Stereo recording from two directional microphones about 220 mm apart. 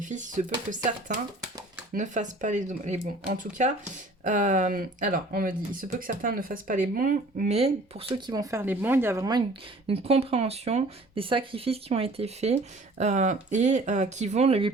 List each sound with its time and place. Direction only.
0.0 s speech: 35° right (ahead or behind)